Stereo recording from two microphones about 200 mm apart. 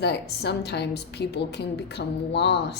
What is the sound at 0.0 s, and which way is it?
A woman's voice, 55° left (ahead or behind).